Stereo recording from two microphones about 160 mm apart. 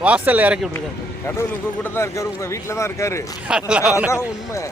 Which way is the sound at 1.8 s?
15° left (ahead or behind).